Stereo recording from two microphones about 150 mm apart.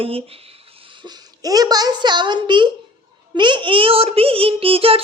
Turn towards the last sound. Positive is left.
turn(degrees=-40)  # may be behind; listen again after turning